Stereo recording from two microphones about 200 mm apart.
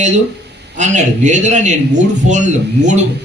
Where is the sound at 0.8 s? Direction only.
35° right (ahead or behind).